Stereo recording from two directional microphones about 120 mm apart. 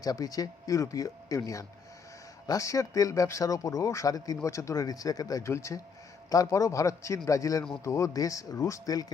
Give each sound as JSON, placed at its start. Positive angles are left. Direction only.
{"t": 0.0, "sound": "speech", "side_deg": 30}